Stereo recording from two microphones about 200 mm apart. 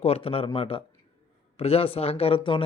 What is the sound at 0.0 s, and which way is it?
A man's voice, 30° left (ahead or behind).